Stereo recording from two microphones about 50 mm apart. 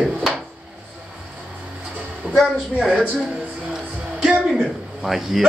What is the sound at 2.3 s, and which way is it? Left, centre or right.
Speech, centre.